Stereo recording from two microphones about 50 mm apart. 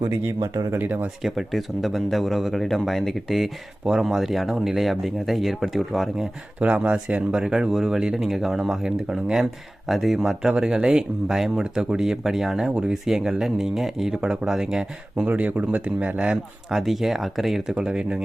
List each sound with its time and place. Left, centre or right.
0.1 s speech: right
1.2 s speech: centre
6.6 s speech: right; by 10.5 s centre
10.5 s speech: centre
15.3 s speech: right
16.1 s speech: centre
16.7 s speech: centre
17.7 s speech: centre